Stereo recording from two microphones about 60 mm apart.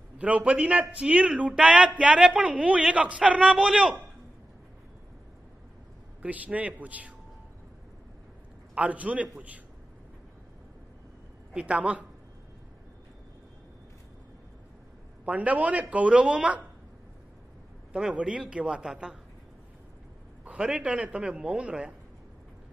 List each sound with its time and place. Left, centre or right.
0.2 s a man's voice: right
6.2 s a man's voice: right
8.7 s a man's voice: right
11.5 s a man's voice: right
15.2 s a man's voice: right
17.9 s a man's voice: centre
20.4 s a man's voice: centre